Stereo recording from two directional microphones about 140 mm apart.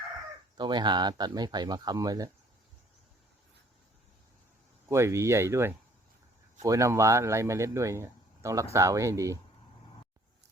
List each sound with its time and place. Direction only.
0.5 s speech: 30° right (ahead or behind)
4.9 s speech: 20° right (ahead or behind)